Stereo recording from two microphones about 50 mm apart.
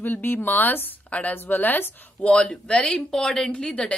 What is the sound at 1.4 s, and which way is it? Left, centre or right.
Speech, left.